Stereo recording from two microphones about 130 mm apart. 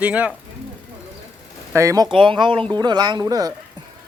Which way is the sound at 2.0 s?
40° right (ahead or behind).